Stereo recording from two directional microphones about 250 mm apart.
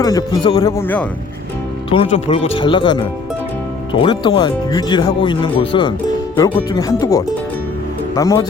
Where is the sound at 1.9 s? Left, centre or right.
Left.